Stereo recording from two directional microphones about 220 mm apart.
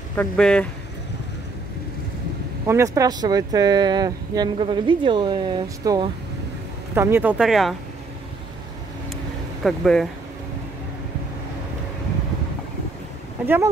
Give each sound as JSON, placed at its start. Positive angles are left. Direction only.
{"t": 0.1, "sound": "speech", "side_deg": 5}
{"t": 2.6, "sound": "speech", "side_deg": -15}
{"t": 7.0, "sound": "speech", "side_deg": -10}
{"t": 9.1, "sound": "vehicle", "side_deg": 0}